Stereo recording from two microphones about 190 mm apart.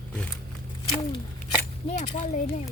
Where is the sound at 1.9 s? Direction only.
40° left (ahead or behind).